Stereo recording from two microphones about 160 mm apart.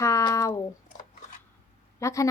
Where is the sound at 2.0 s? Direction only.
20° left (ahead or behind).